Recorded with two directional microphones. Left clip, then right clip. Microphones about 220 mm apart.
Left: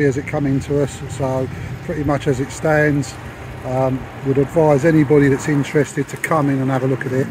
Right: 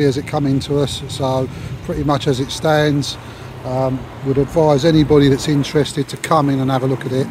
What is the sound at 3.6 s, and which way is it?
Speech, centre (ahead or behind).